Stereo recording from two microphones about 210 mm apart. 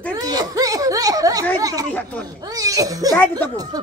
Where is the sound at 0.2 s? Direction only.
20° right (ahead or behind).